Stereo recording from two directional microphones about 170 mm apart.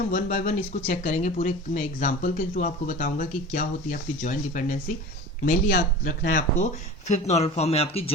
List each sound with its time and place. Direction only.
0.1 s speech: 50° left (ahead or behind); by 8.1 s 35° left (ahead or behind)